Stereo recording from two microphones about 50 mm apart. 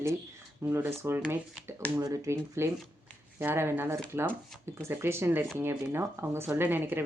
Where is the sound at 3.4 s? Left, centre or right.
Right.